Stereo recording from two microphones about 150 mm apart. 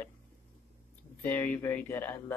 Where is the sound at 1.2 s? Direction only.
10° left (ahead or behind).